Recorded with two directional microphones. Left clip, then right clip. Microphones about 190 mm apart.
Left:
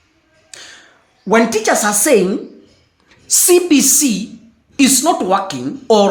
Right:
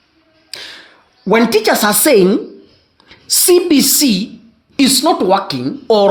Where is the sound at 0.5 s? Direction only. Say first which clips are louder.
Right 6 dB; 45° right (ahead or behind).